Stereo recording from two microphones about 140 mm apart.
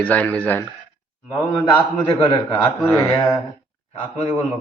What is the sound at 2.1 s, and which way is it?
A man's voice, 25° left (ahead or behind).